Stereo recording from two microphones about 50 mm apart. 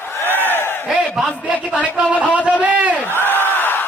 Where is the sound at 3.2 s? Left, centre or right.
Left.